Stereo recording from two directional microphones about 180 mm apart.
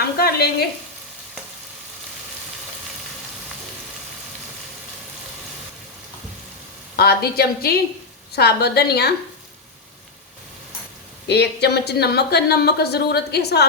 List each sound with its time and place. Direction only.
0.2 s stir: 60° left (ahead or behind)
6.9 s speech: 60° left (ahead or behind)
11.3 s speech: 65° left (ahead or behind)